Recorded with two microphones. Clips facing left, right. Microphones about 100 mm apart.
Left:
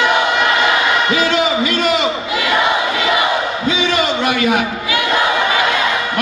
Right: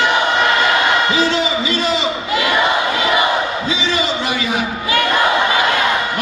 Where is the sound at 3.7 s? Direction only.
60° left (ahead or behind).